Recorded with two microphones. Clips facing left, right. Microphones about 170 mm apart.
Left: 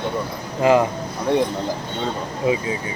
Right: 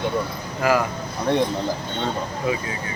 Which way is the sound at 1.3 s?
5° left (ahead or behind).